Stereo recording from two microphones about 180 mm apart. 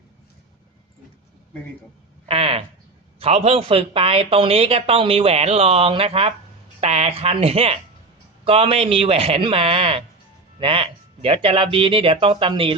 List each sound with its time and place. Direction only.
2.2 s speech: 30° right (ahead or behind)